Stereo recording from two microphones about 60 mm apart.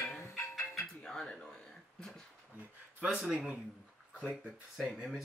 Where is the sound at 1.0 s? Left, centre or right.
Centre.